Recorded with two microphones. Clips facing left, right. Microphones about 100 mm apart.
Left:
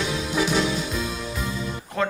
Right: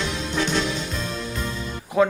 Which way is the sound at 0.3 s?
5° left (ahead or behind).